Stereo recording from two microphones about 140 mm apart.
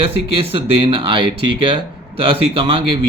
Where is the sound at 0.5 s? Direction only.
40° right (ahead or behind).